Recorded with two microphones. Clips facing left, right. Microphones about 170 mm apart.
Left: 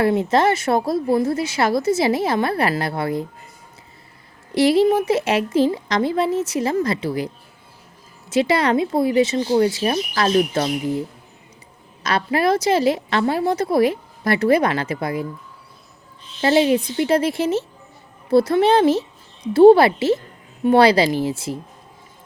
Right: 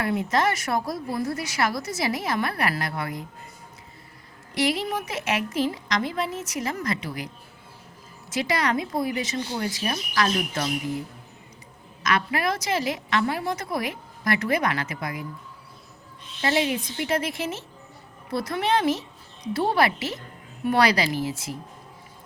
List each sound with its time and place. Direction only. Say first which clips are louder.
0.0 s a woman's voice: left 7 dB; 30° left (ahead or behind)
4.5 s a woman's voice: left 10 dB; 30° left (ahead or behind)
8.3 s a woman's voice: left 8 dB; 25° left (ahead or behind)
12.0 s a woman's voice: left 6 dB; 30° left (ahead or behind)
16.4 s a woman's voice: left 8 dB; 30° left (ahead or behind)